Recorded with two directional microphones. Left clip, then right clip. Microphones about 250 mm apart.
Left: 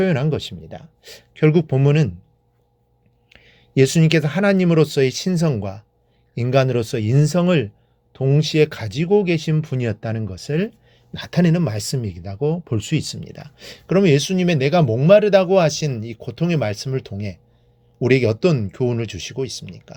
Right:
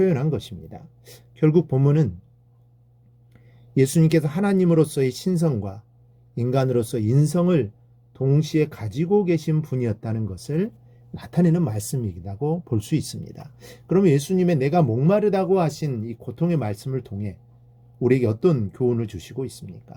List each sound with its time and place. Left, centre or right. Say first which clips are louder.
0.0 s speech: left 2 dB; centre
3.2 s speech: left 10 dB; centre